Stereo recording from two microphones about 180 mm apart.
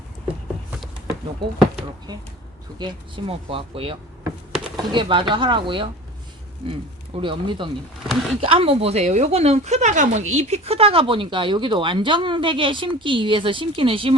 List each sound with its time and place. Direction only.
2.7 s speech: 30° right (ahead or behind)
8.0 s speech: centre (ahead or behind)
8.4 s speech: 30° right (ahead or behind)